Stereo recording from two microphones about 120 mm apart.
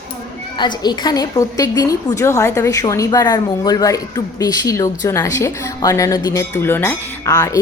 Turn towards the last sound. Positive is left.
turn(degrees=30)  # may be behind; listen again after turning